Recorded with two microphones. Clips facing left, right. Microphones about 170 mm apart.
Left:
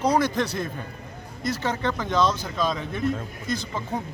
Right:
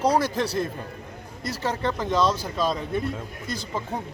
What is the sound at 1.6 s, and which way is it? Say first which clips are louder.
Speech: right 3 dB; 30° right (ahead or behind).